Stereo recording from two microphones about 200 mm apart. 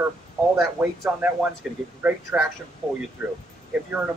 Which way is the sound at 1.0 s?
10° right (ahead or behind).